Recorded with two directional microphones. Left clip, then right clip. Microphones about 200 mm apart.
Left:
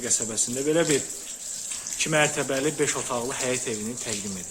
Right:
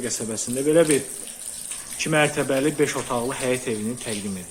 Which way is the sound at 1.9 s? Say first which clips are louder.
Right 2 dB; 5° left (ahead or behind).